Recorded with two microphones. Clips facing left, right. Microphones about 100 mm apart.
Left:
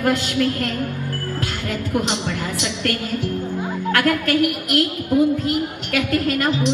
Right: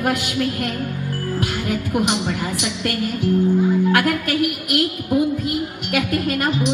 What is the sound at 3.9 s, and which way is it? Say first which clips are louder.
A woman's voice: left 1 dB; 15° right (ahead or behind).